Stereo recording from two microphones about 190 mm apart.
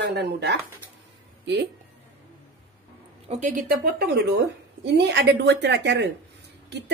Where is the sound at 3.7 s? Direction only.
50° right (ahead or behind).